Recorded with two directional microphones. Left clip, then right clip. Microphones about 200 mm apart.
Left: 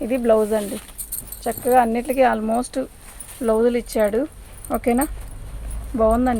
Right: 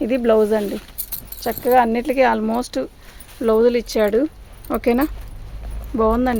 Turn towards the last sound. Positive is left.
turn(degrees=-55)  # may be behind; listen again after turning